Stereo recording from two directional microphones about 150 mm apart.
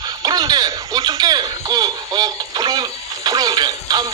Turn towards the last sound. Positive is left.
turn(degrees=-25)  # may be behind; listen again after turning